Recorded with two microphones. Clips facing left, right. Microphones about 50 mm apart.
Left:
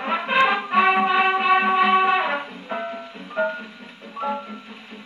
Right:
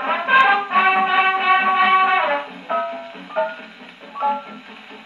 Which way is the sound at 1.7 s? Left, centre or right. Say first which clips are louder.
Right 2 dB; right.